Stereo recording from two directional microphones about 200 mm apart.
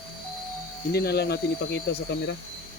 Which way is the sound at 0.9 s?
55° left (ahead or behind).